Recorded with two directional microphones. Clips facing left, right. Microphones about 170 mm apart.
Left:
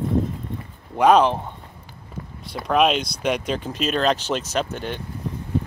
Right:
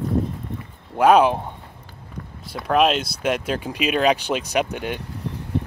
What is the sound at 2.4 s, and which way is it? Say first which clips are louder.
Speech: right 1 dB; centre (ahead or behind).